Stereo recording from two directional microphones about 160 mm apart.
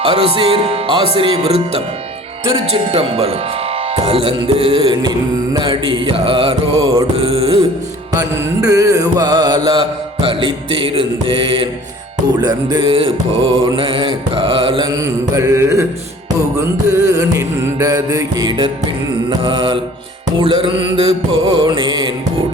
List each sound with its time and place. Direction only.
0.0 s mantra: 35° right (ahead or behind)
8.1 s music: 20° right (ahead or behind)
12.4 s mantra: 25° right (ahead or behind)
14.8 s music: 20° right (ahead or behind)
20.4 s mantra: 35° right (ahead or behind)